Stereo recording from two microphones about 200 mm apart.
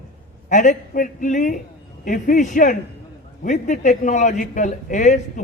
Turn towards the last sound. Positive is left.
turn(degrees=35)  # may be behind; listen again after turning